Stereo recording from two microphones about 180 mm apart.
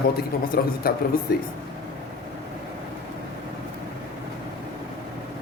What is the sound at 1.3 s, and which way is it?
Speech, 60° left (ahead or behind).